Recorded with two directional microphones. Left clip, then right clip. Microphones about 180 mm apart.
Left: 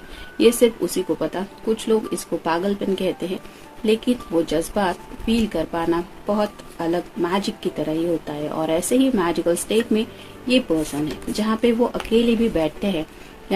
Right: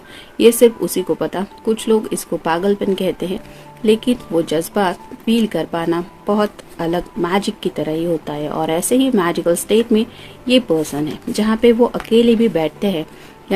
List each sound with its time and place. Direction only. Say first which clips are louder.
0.3 s speech: right 5 dB; 50° right (ahead or behind)